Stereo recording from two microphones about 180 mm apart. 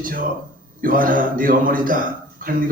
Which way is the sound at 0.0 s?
50° right (ahead or behind).